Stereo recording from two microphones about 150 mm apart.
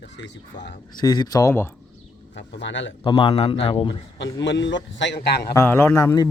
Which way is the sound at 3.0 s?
35° left (ahead or behind).